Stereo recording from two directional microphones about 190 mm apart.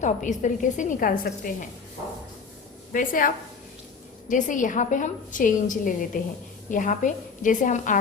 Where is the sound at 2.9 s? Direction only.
45° left (ahead or behind).